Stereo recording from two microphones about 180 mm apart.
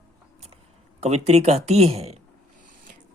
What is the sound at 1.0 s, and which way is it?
Speech, 35° right (ahead or behind).